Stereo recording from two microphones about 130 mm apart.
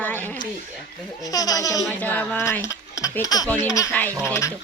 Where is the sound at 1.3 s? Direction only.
30° left (ahead or behind).